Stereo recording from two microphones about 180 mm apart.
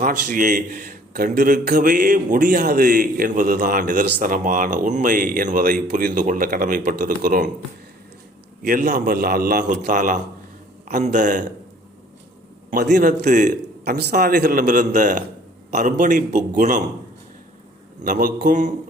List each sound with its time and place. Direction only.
0.0 s a man's voice: 45° right (ahead or behind); by 1.7 s 60° right (ahead or behind)
1.7 s a man's voice: 50° right (ahead or behind)
8.6 s a man's voice: 50° right (ahead or behind)
12.7 s a man's voice: 50° right (ahead or behind)
13.8 s a man's voice: 60° right (ahead or behind); by 16.8 s 45° right (ahead or behind)
18.0 s a man's voice: 50° right (ahead or behind)